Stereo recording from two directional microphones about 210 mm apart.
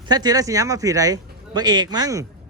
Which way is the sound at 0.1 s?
20° right (ahead or behind).